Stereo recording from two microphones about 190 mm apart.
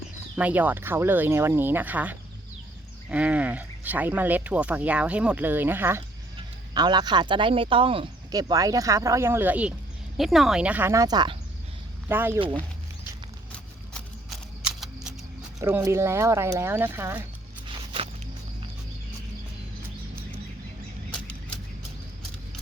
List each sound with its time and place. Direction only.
0.3 s speech: 10° right (ahead or behind)
6.7 s speech: 20° right (ahead or behind)
12.4 s speech: 25° right (ahead or behind)
14.3 s single-lens reflex camera: centre (ahead or behind)
15.6 s speech: 15° right (ahead or behind)
21.1 s bird flight: 5° left (ahead or behind)